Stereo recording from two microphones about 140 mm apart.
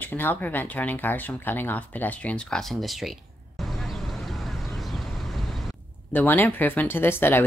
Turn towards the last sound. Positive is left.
turn(degrees=15)  # may be behind; listen again after turning